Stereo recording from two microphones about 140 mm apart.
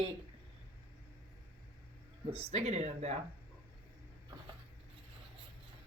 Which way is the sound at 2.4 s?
50° right (ahead or behind).